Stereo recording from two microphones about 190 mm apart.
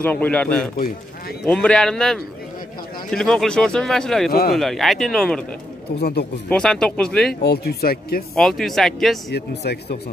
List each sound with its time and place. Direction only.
0.0 s a man's voice: 10° left (ahead or behind)
5.9 s speech: 55° left (ahead or behind)
6.5 s speech: 5° left (ahead or behind)
7.4 s speech: 55° left (ahead or behind)
8.4 s speech: centre (ahead or behind)
9.3 s speech: 60° left (ahead or behind)